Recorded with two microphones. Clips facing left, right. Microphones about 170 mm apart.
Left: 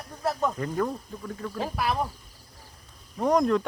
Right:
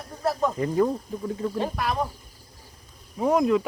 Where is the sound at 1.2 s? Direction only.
20° right (ahead or behind).